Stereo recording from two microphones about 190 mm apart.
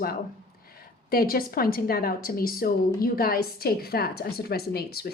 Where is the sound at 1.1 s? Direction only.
50° left (ahead or behind).